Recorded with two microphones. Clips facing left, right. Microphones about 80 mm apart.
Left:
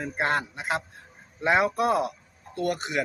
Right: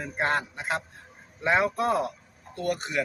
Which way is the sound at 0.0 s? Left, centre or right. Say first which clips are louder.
Left 1 dB; centre.